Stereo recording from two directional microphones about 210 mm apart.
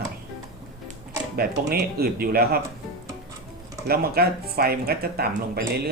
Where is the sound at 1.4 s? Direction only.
45° right (ahead or behind).